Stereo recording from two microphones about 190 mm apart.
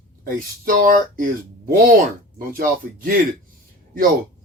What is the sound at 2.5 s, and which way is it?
Speech, 45° right (ahead or behind).